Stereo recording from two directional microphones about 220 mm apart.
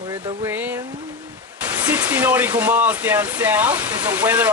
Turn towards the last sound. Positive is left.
turn(degrees=-5)  # may be behind; listen again after turning